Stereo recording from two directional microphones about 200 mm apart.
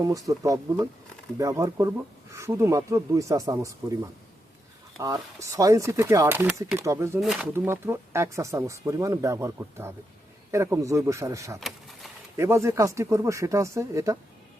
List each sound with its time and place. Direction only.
0.0 s speech: 15° right (ahead or behind)
4.9 s speech: 15° right (ahead or behind)
7.2 s speech: centre (ahead or behind)
7.5 s speech: 10° right (ahead or behind)